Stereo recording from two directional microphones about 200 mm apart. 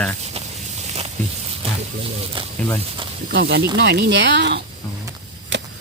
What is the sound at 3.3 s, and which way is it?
Speech, 55° right (ahead or behind).